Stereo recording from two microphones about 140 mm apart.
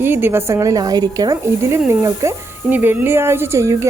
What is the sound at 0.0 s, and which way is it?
Speech, 15° right (ahead or behind).